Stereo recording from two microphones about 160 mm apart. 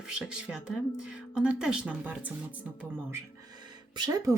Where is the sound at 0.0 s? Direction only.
5° right (ahead or behind).